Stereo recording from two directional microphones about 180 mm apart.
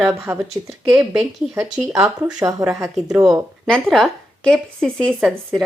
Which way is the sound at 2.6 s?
15° right (ahead or behind).